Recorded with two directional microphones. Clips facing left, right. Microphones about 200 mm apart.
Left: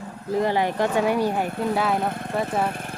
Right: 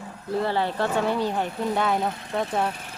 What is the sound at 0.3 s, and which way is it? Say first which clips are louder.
Speech: left 3 dB; 15° left (ahead or behind).